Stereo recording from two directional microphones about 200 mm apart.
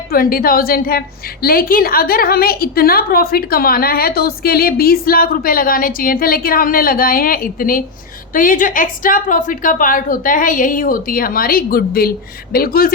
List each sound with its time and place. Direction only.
0.1 s a woman's voice: 45° left (ahead or behind)